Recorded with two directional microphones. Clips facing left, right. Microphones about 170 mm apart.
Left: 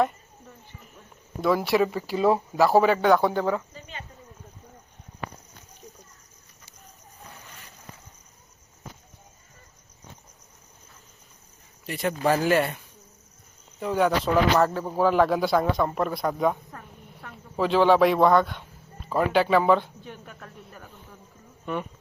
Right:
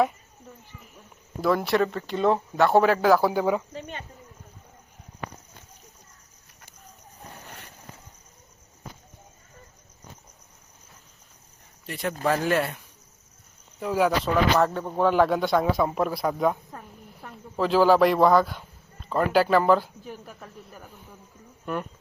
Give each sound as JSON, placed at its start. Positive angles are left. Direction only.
{"t": 0.8, "sound": "speech", "side_deg": 0}
{"t": 3.7, "sound": "cricket", "side_deg": -70}
{"t": 11.9, "sound": "speech", "side_deg": 0}